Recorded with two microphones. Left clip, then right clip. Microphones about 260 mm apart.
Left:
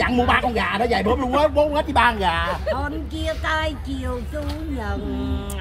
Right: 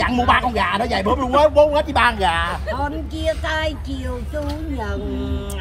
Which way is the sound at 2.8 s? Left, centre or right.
Centre.